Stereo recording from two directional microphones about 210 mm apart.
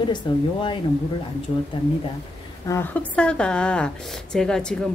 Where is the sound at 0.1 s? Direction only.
25° left (ahead or behind).